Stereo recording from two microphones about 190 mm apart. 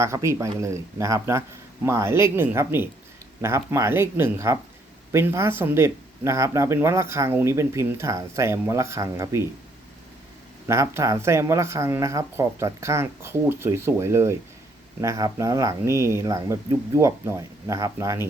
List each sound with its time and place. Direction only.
0.0 s speech: 15° right (ahead or behind)
10.7 s speech: 15° right (ahead or behind)